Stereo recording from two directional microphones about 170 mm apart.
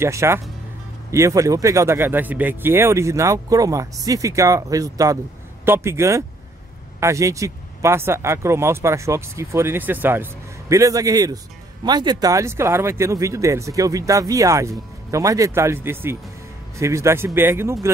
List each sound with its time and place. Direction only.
0.0 s speech: 15° right (ahead or behind)